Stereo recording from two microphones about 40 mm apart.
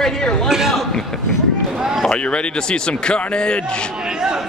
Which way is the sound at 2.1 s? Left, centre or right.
Left.